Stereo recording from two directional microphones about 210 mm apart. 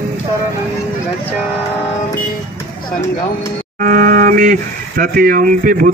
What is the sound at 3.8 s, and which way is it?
Speech, 40° right (ahead or behind).